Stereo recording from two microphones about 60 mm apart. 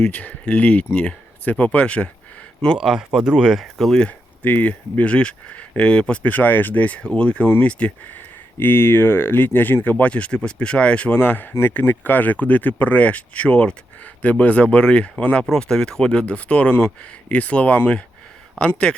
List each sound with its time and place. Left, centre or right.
0.0 s speech: left
2.7 s speech: centre
4.4 s speech: left
8.5 s speech: left; by 11.1 s centre
11.1 s speech: left; by 18.9 s centre